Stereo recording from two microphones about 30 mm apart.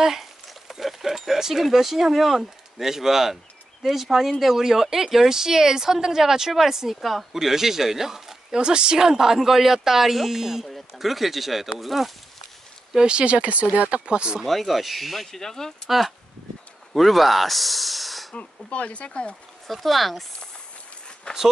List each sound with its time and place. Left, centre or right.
0.2 s speech: centre
7.0 s speech: centre
7.3 s speech: centre
8.5 s speech: right; by 12.1 s centre
12.9 s speech: right
13.2 s speech: right
14.0 s speech: right
14.4 s speech: centre
15.4 s speech: centre
16.9 s speech: centre
18.3 s speech: left
19.7 s speech: centre
21.3 s speech: left